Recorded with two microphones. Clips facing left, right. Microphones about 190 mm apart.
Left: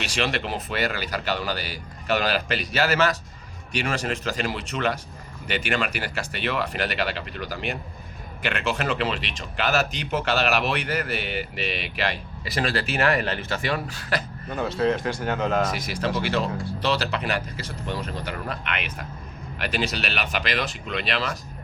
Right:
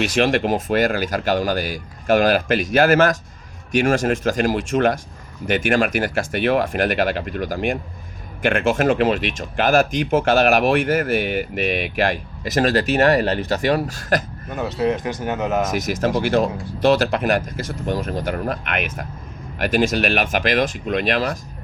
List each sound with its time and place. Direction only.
0.0 s speech: 50° right (ahead or behind)
14.5 s speech: 15° right (ahead or behind)
15.7 s speech: 45° right (ahead or behind)